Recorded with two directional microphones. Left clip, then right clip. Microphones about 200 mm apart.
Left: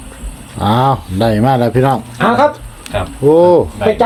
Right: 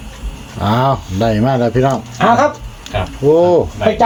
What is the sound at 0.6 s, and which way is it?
Speech, 20° left (ahead or behind).